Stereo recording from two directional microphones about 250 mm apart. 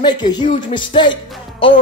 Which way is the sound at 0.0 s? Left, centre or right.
Centre.